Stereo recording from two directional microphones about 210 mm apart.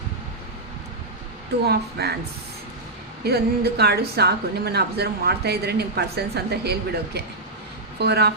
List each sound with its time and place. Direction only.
1.6 s a woman's voice: 50° right (ahead or behind)
3.2 s a woman's voice: 50° right (ahead or behind)